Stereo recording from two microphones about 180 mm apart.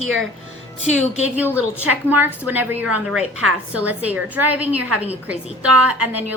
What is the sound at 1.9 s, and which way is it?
A woman's voice, 10° right (ahead or behind).